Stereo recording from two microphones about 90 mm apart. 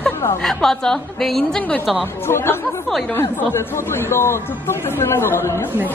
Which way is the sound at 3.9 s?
30° left (ahead or behind).